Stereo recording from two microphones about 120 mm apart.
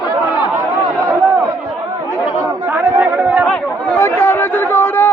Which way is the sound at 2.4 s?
25° right (ahead or behind).